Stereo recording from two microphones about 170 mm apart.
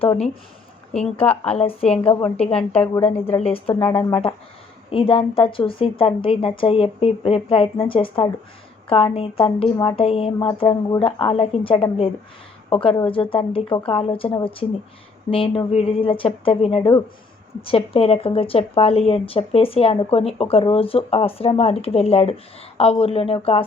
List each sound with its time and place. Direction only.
1.1 s speech: 35° left (ahead or behind)
3.1 s speech: 10° left (ahead or behind)
3.3 s speech: 35° left (ahead or behind)